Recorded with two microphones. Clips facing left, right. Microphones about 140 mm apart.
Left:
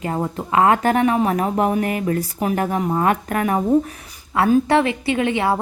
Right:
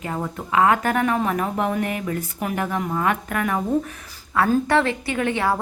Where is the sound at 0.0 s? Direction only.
30° left (ahead or behind).